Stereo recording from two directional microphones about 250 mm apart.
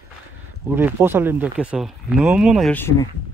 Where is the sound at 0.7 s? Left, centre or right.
Centre.